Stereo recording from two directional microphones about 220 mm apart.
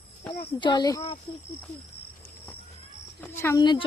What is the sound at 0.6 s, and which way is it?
Speech, 20° left (ahead or behind).